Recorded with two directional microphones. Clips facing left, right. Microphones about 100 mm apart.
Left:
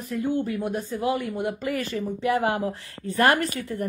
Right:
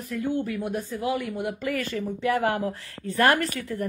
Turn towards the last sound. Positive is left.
turn(degrees=20)  # may be behind; listen again after turning